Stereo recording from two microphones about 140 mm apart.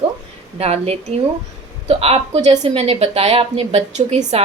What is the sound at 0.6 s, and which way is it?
A woman's voice, 50° right (ahead or behind).